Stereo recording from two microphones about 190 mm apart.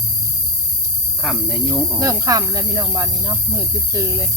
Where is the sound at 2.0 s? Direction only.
20° right (ahead or behind).